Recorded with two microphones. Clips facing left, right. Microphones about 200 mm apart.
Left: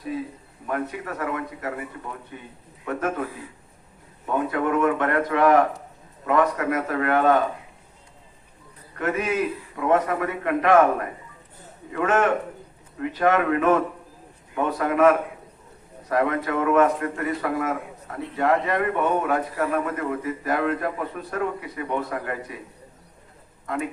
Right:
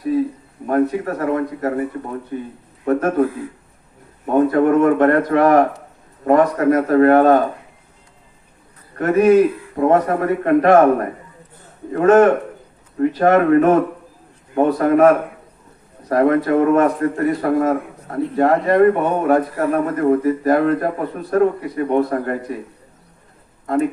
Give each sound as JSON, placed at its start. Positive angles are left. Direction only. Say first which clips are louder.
{"t": 0.7, "sound": "a man's voice", "louder": "right 11 dB", "side_deg": -40}
{"t": 4.3, "sound": "a man's voice", "louder": "right 9 dB", "side_deg": -40}
{"t": 9.0, "sound": "a man's voice", "louder": "right 12 dB", "side_deg": -40}
{"t": 11.9, "sound": "a man's voice", "louder": "right 10 dB", "side_deg": -40}